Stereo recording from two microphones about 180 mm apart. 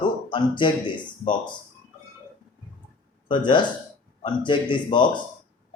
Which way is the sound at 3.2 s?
25° left (ahead or behind).